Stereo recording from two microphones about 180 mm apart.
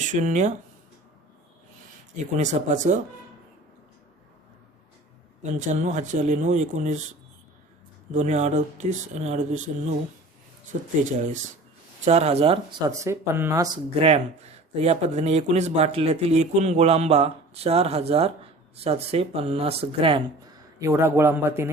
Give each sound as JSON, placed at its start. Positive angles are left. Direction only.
{"t": 0.0, "sound": "speech", "side_deg": -45}
{"t": 2.1, "sound": "speech", "side_deg": -40}
{"t": 5.4, "sound": "speech", "side_deg": -45}
{"t": 8.1, "sound": "speech", "side_deg": -40}
{"t": 10.7, "sound": "speech", "side_deg": -40}
{"t": 12.9, "sound": "a man's voice", "side_deg": -15}
{"t": 14.0, "sound": "speech", "side_deg": -35}
{"t": 20.7, "sound": "a man's voice", "side_deg": -15}